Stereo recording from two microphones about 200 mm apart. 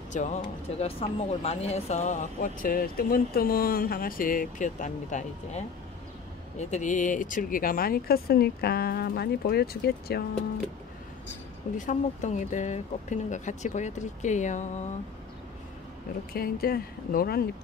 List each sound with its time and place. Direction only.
0.1 s speech: 40° left (ahead or behind)
6.7 s speech: 40° left (ahead or behind)
11.7 s speech: 40° left (ahead or behind)
16.3 s speech: 50° left (ahead or behind)